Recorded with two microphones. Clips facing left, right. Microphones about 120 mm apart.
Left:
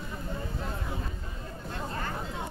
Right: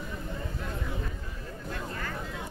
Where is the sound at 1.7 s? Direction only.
30° left (ahead or behind).